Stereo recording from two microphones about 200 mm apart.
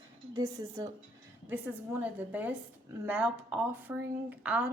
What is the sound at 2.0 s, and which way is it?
Speech, 10° right (ahead or behind).